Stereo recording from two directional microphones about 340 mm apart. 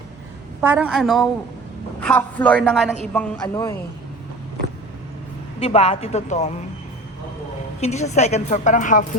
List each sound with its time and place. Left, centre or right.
0.6 s a man's voice: centre
5.5 s a woman's voice: centre
7.8 s a woman's voice: centre